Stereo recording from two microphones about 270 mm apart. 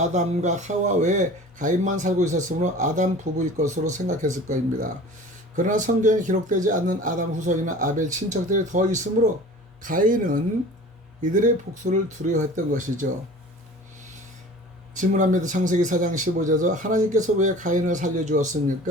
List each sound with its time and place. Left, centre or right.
0.0 s speech: right
14.9 s speech: right